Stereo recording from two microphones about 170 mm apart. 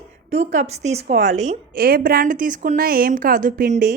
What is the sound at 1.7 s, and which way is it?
A woman's voice, 60° right (ahead or behind).